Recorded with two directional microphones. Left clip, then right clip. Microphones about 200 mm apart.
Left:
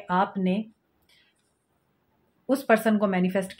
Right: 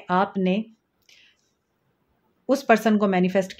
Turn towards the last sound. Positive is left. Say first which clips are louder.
# right 5 dB
turn(degrees=-50)  # may be behind; listen again after turning